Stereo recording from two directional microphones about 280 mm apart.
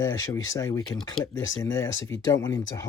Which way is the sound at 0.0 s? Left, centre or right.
Centre.